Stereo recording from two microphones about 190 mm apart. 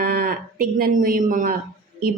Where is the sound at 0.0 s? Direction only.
50° right (ahead or behind).